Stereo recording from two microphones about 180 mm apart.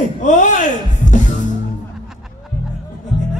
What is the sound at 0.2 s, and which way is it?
Music, 45° left (ahead or behind).